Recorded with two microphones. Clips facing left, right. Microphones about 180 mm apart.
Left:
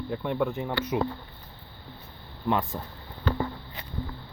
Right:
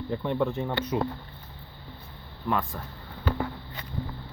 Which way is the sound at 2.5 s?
25° left (ahead or behind).